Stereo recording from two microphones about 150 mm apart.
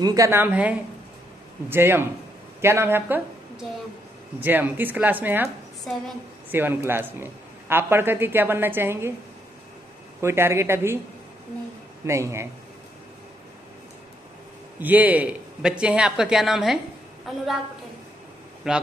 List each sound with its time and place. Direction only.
0.0 s a man's voice: 20° right (ahead or behind)
4.4 s a man's voice: 15° right (ahead or behind)
5.9 s speech: 5° left (ahead or behind)
6.5 s a man's voice: 15° right (ahead or behind)
10.2 s a man's voice: 15° right (ahead or behind)
12.1 s a man's voice: 20° right (ahead or behind)
14.8 s speech: 10° right (ahead or behind)
18.6 s speech: 5° right (ahead or behind)